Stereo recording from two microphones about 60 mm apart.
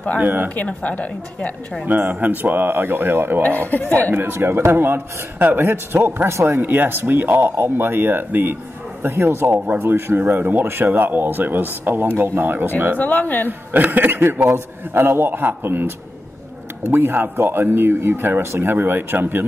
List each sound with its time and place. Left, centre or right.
0.2 s speech: right
0.6 s a woman's voice: left
1.9 s speech: right
3.4 s a woman's voice: left
4.1 s speech: right
9.0 s speech: right
13.0 s a woman's voice: left
13.5 s speech: right
16.9 s speech: right